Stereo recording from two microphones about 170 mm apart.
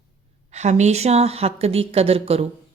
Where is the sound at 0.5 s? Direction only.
40° right (ahead or behind).